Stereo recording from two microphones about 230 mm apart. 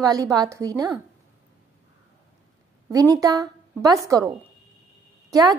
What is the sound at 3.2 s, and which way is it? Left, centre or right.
A woman's voice, centre.